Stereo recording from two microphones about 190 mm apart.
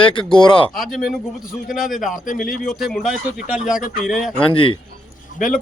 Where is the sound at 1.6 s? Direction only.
Centre (ahead or behind).